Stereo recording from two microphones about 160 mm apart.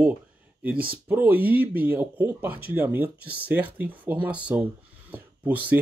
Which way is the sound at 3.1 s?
80° right.